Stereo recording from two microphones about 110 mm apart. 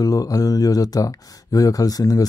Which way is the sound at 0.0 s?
35° left (ahead or behind).